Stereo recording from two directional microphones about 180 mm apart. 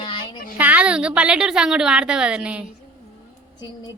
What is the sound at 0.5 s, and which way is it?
A woman's voice, 10° right (ahead or behind).